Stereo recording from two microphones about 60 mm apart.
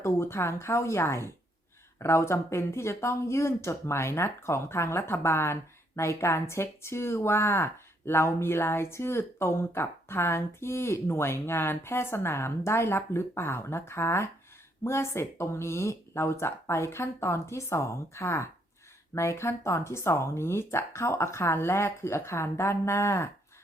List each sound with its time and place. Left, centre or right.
0.0 s speech: left